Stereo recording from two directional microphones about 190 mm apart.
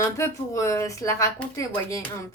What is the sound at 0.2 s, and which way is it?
Speech, 15° left (ahead or behind).